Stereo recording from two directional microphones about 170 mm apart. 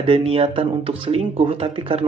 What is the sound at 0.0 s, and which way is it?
A man's voice, 35° right (ahead or behind).